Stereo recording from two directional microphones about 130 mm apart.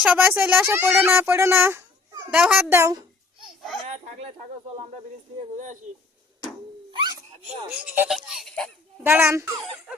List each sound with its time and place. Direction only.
0.0 s a child's voice: 15° right (ahead or behind)
2.6 s a child's voice: 20° right (ahead or behind)
3.4 s a sound: centre (ahead or behind)
3.8 s speech: 65° right (ahead or behind)
6.9 s a sound: 35° right (ahead or behind)
7.8 s baby laughter: 10° right (ahead or behind)
9.0 s a child's voice: 20° right (ahead or behind)